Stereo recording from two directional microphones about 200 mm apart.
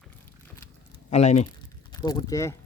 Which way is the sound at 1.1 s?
35° left (ahead or behind).